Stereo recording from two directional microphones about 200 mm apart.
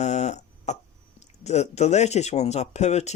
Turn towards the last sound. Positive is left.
turn(degrees=35)  # may be behind; listen again after turning